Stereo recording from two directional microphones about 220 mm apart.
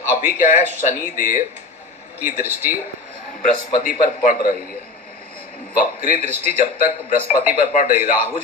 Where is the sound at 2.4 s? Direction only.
10° right (ahead or behind).